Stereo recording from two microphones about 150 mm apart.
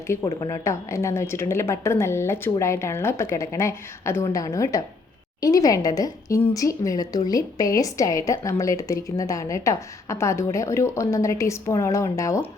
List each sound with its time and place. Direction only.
0.3 s speech: 25° left (ahead or behind)